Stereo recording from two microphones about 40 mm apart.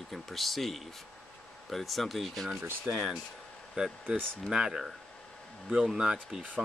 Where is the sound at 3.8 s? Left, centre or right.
Right.